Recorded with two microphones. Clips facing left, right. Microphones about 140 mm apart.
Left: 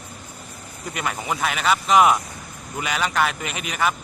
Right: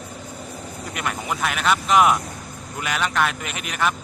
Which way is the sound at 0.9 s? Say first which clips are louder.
Left 1 dB; centre (ahead or behind).